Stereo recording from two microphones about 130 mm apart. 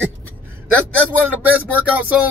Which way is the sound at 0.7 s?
15° right (ahead or behind).